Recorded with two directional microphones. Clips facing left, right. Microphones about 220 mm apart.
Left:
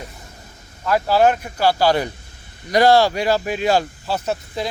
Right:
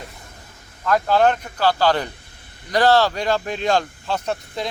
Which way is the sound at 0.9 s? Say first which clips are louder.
Left 1 dB; 10° left (ahead or behind).